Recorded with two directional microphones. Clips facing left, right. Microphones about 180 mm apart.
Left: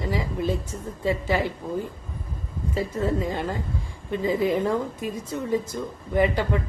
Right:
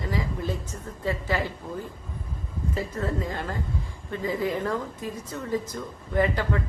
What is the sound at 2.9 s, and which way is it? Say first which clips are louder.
A woman's voice: left 7 dB; 15° left (ahead or behind).